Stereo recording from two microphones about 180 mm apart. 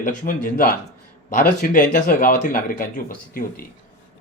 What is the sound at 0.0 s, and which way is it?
Speech, 45° left (ahead or behind).